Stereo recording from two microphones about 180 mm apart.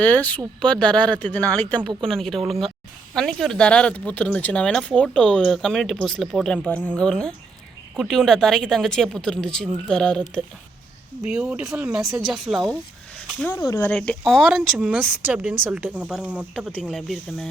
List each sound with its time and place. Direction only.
0.0 s speech: 10° left (ahead or behind)
13.6 s speech: 15° left (ahead or behind)
13.9 s speech: 5° left (ahead or behind)